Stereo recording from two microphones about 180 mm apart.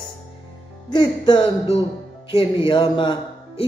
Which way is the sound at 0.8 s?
25° left (ahead or behind).